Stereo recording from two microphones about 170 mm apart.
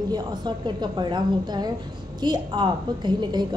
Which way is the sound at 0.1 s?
25° right (ahead or behind).